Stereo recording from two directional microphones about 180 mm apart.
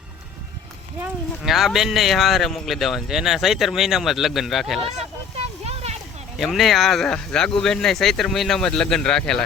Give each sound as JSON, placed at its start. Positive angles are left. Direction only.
{"t": 1.0, "sound": "speech", "side_deg": 0}
{"t": 4.9, "sound": "vehicle", "side_deg": -35}
{"t": 6.4, "sound": "speech", "side_deg": 0}